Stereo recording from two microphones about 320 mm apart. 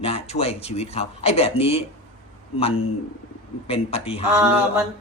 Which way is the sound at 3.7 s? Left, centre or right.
Centre.